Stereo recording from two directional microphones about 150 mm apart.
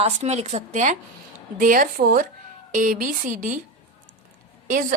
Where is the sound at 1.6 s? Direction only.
65° right (ahead or behind).